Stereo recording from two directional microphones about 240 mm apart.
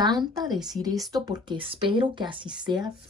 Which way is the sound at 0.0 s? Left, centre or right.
Centre.